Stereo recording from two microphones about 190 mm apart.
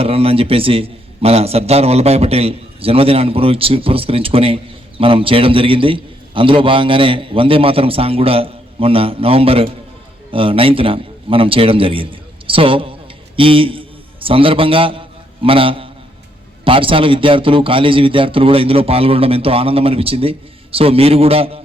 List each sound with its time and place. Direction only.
0.0 s a man's voice: 30° right (ahead or behind)